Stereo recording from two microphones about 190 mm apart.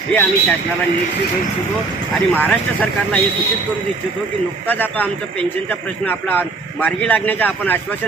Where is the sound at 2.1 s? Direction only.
5° left (ahead or behind).